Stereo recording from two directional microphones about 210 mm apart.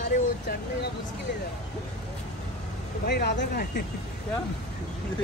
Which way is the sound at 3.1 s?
55° left (ahead or behind).